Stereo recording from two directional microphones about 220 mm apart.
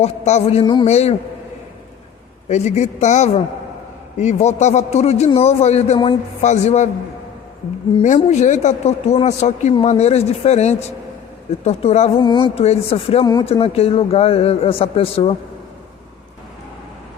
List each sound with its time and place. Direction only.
0.0 s speech: 30° left (ahead or behind)
2.5 s speech: 30° left (ahead or behind)
7.9 s speech: 30° left (ahead or behind)